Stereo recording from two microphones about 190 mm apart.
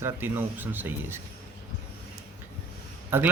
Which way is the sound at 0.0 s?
10° right (ahead or behind).